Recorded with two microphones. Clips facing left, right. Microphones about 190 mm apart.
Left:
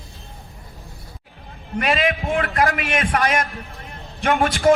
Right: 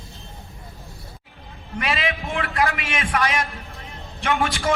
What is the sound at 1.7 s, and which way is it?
A man's voice, 40° left (ahead or behind).